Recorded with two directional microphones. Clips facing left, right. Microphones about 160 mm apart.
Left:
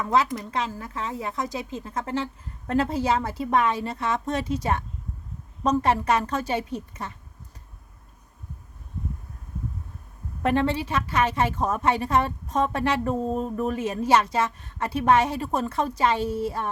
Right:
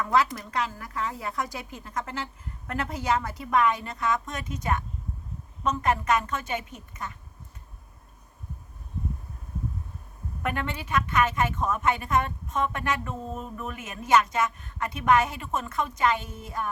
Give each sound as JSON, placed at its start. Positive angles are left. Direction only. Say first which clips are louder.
{"t": 0.0, "sound": "a woman's voice", "louder": "left 1 dB", "side_deg": 20}
{"t": 10.4, "sound": "a woman's voice", "louder": "left 8 dB", "side_deg": 30}